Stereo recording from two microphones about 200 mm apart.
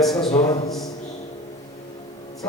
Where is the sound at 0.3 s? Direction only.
20° left (ahead or behind).